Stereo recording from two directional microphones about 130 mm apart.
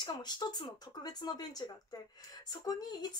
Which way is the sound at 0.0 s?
35° left (ahead or behind).